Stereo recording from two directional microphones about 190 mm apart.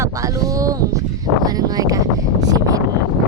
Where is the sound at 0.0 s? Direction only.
15° right (ahead or behind).